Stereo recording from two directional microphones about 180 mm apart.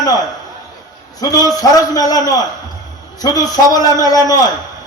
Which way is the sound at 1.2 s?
20° left (ahead or behind).